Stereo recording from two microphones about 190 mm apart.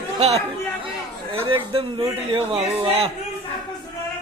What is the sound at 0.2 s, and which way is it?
A man's voice, 35° right (ahead or behind).